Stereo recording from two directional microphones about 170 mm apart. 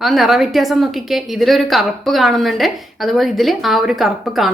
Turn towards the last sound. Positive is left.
turn(degrees=0)  # may be behind; listen again after turning